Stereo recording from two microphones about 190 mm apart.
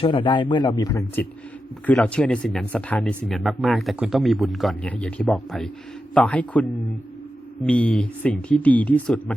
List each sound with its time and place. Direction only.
0.0 s a man's voice: 25° left (ahead or behind); by 9.3 s 5° left (ahead or behind)